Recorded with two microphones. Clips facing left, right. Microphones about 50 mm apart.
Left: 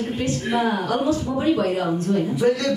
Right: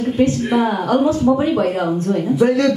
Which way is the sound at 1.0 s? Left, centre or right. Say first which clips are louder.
Right 5 dB; right.